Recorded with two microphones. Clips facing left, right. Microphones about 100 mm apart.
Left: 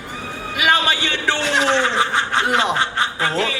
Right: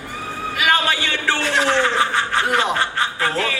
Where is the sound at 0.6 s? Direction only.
20° left (ahead or behind).